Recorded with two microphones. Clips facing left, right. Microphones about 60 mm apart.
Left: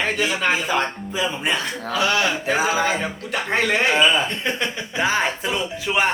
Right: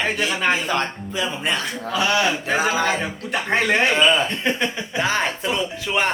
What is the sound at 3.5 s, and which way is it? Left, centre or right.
Speech, centre.